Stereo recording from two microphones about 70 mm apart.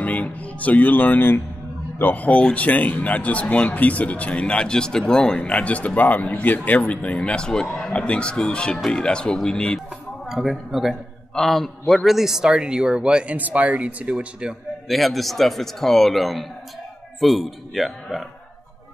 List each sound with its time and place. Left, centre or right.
0.0 s speech: left
10.2 s a man's voice: centre
14.9 s a man's voice: centre